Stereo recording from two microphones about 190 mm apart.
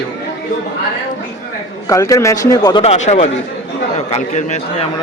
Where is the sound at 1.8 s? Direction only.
15° left (ahead or behind).